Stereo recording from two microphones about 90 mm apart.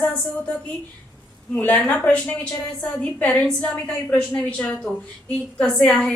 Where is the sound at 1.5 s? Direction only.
15° left (ahead or behind).